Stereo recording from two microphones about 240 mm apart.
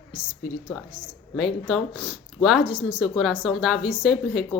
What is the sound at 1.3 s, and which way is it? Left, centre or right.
Speech, centre.